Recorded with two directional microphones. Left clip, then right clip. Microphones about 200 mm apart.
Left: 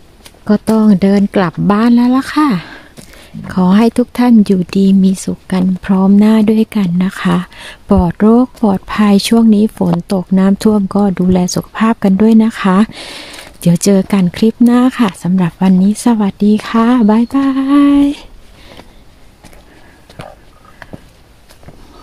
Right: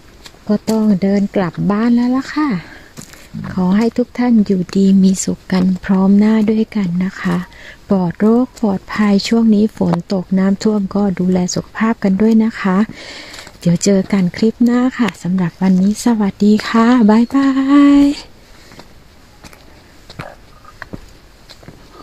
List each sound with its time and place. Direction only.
0.5 s speech: 25° left (ahead or behind)
4.7 s speech: 5° left (ahead or behind)
20.2 s a sound: 35° right (ahead or behind)